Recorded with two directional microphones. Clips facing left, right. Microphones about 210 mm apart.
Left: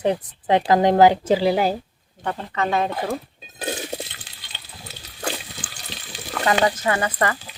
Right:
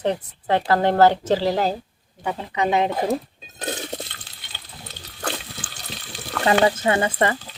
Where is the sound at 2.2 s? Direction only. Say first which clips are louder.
Right 1 dB; 10° right (ahead or behind).